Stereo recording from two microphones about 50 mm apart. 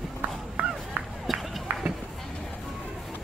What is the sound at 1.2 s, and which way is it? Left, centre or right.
Run, centre.